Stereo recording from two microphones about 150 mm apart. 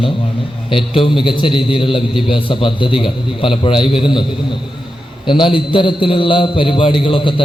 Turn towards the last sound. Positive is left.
turn(degrees=35)  # may be behind; listen again after turning